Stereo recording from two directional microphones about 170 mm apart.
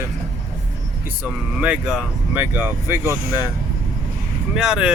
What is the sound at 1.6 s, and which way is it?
Speech, 5° right (ahead or behind).